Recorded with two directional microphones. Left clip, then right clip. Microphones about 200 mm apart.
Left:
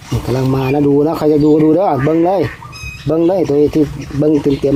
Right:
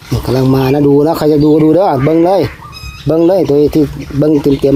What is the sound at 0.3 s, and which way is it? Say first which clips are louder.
Speech: right 4 dB; 50° right (ahead or behind).